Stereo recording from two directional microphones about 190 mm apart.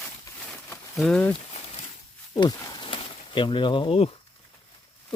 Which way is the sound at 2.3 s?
20° left (ahead or behind).